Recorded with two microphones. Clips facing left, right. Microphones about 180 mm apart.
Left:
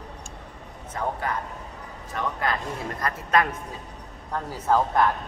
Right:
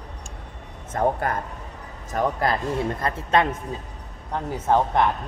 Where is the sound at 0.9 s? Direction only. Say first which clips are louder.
Right 6 dB; 50° right (ahead or behind).